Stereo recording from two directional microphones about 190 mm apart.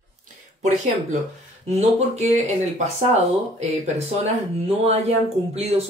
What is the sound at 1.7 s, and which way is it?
Speech, 35° right (ahead or behind).